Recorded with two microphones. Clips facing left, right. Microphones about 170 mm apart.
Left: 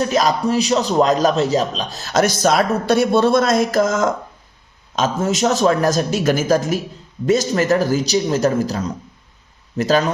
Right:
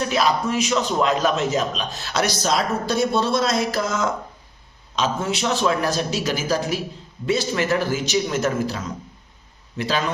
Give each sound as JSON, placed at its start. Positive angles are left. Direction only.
{"t": 0.0, "sound": "a man's voice", "side_deg": 40}